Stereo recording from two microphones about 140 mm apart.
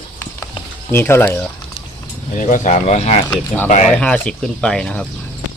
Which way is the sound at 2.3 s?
65° left (ahead or behind).